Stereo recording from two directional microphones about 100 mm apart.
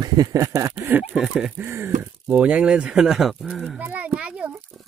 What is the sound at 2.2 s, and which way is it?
Speech, 10° right (ahead or behind).